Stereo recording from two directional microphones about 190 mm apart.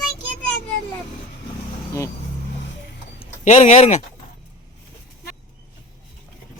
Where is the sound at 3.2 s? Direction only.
40° left (ahead or behind).